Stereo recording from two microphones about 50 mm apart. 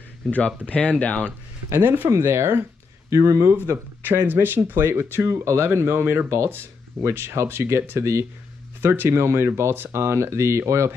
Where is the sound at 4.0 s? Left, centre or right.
Right.